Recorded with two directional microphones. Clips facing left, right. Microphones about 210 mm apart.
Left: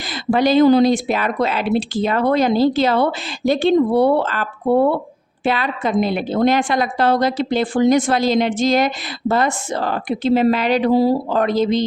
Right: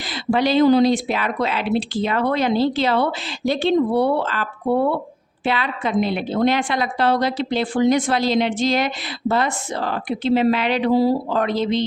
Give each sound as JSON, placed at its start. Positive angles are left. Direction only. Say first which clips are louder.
{"t": 0.1, "sound": "speech", "louder": "left 3 dB", "side_deg": 45}